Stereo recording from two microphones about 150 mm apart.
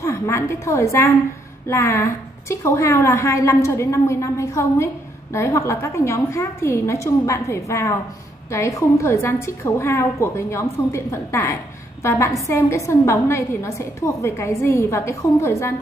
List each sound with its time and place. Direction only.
0.0 s a woman's voice: 20° left (ahead or behind)